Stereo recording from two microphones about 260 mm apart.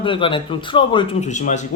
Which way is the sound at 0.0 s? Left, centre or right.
Centre.